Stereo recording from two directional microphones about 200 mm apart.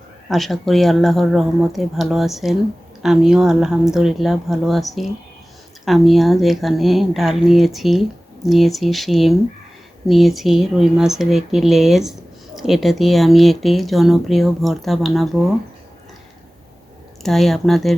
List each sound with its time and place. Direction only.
0.3 s speech: centre (ahead or behind)
17.2 s speech: centre (ahead or behind)